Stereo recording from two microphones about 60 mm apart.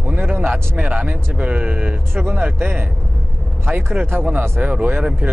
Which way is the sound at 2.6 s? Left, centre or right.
Right.